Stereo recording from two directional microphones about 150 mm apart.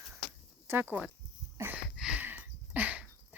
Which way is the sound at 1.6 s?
10° right (ahead or behind).